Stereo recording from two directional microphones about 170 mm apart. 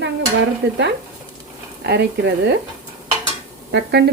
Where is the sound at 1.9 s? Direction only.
75° right (ahead or behind).